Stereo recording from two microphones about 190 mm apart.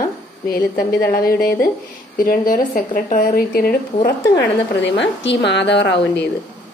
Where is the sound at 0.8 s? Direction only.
50° left (ahead or behind).